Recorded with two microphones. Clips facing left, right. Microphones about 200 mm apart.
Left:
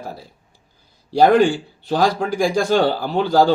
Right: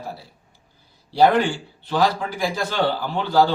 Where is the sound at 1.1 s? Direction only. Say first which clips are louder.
Left 4 dB; 45° left (ahead or behind).